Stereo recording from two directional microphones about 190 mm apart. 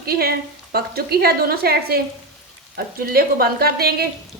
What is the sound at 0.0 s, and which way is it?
A woman's voice, 55° right (ahead or behind).